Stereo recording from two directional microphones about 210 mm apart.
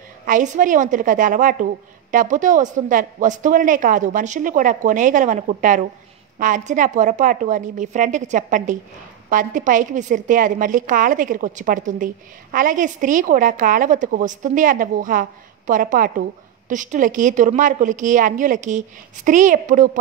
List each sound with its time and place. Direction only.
0.3 s a woman's voice: 40° right (ahead or behind)